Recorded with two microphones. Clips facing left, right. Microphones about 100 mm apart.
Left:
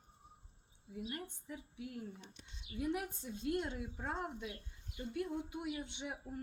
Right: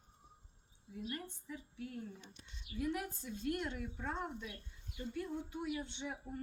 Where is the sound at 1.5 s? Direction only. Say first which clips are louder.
Right 1 dB; 10° left (ahead or behind).